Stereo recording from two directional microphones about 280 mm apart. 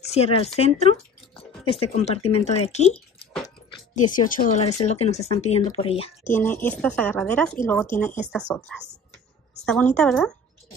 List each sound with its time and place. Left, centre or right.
0.1 s speech: left
3.9 s speech: left
6.2 s speech: centre